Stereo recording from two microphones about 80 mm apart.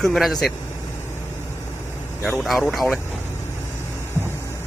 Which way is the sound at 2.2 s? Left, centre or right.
Centre.